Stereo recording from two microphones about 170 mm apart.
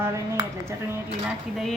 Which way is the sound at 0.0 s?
15° right (ahead or behind).